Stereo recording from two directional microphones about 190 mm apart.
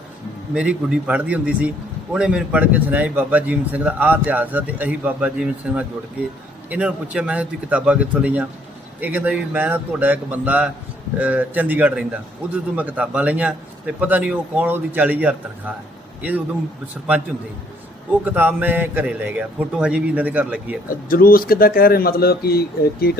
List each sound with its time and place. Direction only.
0.5 s a man's voice: 5° right (ahead or behind)
16.9 s a man's voice: 10° right (ahead or behind)
20.9 s speech: 50° left (ahead or behind)